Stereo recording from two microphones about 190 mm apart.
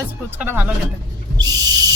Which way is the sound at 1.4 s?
20° right (ahead or behind).